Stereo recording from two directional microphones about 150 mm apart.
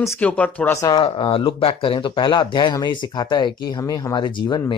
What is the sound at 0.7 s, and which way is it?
Speech, 20° left (ahead or behind).